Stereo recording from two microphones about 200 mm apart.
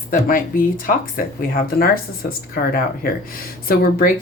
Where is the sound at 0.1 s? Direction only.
45° left (ahead or behind).